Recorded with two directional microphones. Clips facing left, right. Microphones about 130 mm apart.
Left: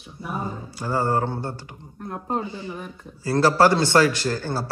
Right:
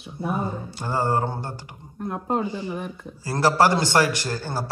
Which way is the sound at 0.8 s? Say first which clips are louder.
Left 1 dB; 20° right (ahead or behind).